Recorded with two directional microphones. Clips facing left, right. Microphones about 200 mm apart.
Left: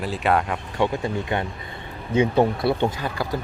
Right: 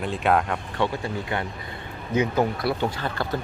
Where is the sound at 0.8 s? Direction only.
20° left (ahead or behind).